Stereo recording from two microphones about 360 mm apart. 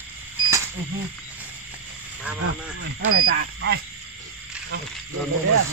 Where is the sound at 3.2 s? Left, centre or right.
Right.